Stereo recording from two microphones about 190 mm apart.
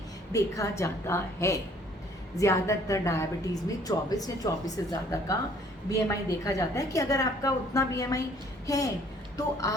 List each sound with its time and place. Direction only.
0.3 s a woman's voice: 15° left (ahead or behind)